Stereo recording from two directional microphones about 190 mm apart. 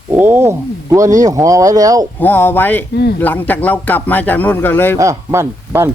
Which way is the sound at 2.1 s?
10° left (ahead or behind).